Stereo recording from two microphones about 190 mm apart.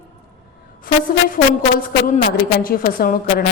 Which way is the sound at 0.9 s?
50° left (ahead or behind).